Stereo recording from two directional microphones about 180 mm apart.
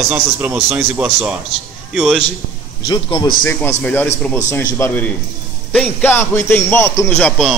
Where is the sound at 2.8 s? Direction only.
25° left (ahead or behind).